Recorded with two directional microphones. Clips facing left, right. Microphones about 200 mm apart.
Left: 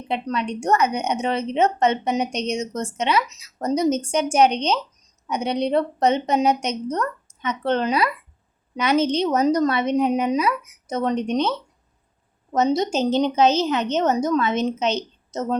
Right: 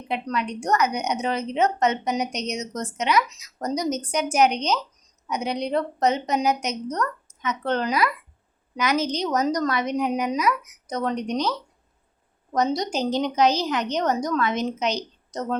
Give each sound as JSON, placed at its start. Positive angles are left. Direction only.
{"t": 0.1, "sound": "a woman's voice", "side_deg": 25}